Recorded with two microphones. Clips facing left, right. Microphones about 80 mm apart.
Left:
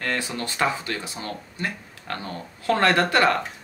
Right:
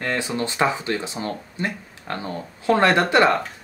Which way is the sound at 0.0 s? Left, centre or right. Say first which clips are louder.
Right 3 dB; centre.